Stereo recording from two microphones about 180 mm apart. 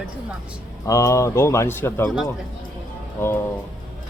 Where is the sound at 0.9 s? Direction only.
20° left (ahead or behind).